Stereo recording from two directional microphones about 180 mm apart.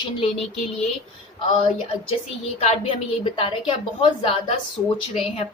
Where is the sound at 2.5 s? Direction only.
30° left (ahead or behind).